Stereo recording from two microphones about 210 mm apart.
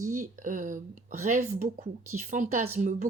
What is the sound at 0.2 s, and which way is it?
A woman's voice, 40° right (ahead or behind).